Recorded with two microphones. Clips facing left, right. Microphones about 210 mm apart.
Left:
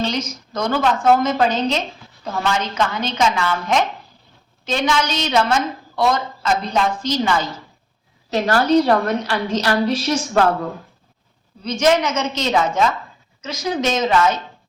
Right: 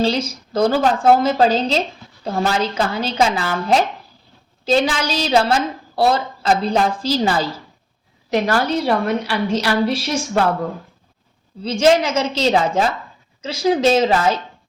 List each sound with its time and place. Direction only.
0.0 s a woman's voice: 30° right (ahead or behind)
8.6 s a woman's voice: 10° right (ahead or behind)
11.6 s a woman's voice: 30° right (ahead or behind)